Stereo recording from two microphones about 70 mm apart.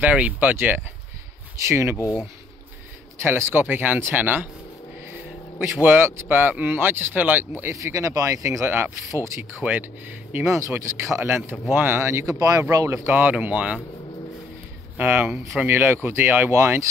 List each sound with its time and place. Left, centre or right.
0.0 s speech: right
1.7 s speech: right
3.2 s speech: right
7.6 s speech: right
9.6 s speech: right
10.4 s speech: right
12.4 s speech: right
13.0 s speech: right
15.0 s speech: right